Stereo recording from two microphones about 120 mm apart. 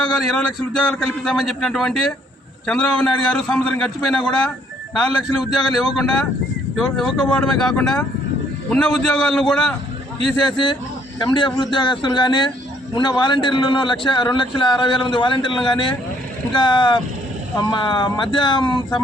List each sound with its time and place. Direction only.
0.3 s a man's voice: 5° left (ahead or behind)
10.3 s a man's voice: 40° left (ahead or behind)